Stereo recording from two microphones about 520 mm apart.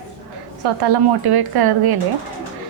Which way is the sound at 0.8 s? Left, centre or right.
Right.